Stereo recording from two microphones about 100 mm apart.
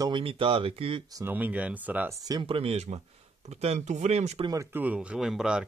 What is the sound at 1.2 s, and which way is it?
Speech, 15° right (ahead or behind).